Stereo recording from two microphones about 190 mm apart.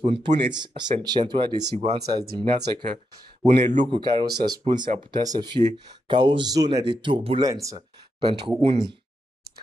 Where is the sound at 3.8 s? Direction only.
25° right (ahead or behind).